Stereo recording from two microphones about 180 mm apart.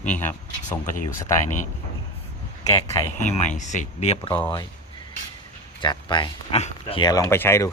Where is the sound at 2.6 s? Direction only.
20° left (ahead or behind).